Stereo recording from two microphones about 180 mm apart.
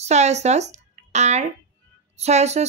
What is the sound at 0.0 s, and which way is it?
Speech, 40° right (ahead or behind).